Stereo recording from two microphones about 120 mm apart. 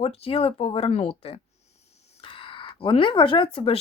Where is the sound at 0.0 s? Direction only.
55° left (ahead or behind).